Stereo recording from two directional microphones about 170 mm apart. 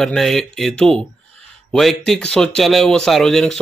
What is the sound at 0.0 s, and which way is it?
Speech, centre (ahead or behind).